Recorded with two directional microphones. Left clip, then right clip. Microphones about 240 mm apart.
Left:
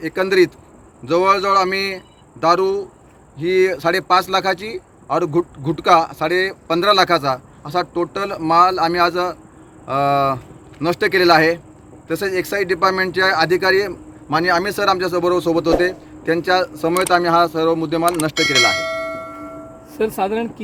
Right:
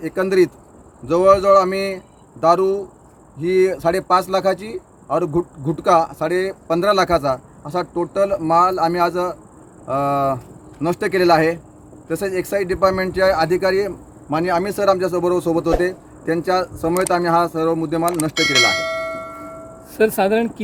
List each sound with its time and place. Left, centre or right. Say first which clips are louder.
0.0 s speech: left 1 dB; centre
19.9 s speech: right 4 dB; right